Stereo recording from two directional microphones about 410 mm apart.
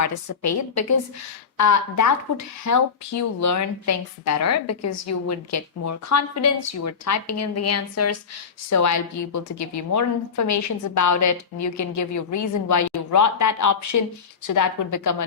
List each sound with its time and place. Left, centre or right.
0.3 s a woman's voice: left